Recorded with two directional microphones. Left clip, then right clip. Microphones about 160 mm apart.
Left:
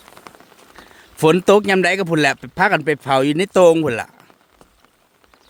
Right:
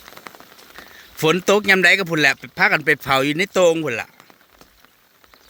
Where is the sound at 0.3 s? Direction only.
Centre (ahead or behind).